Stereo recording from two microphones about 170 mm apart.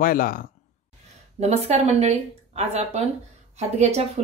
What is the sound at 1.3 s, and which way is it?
Speech, 40° right (ahead or behind).